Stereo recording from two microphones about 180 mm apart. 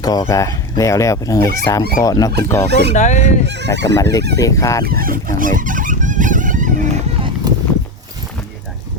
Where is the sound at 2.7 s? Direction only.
70° right (ahead or behind).